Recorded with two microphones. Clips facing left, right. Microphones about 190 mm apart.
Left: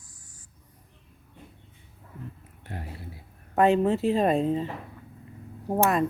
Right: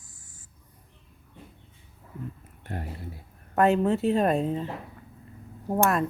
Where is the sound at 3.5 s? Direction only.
Centre (ahead or behind).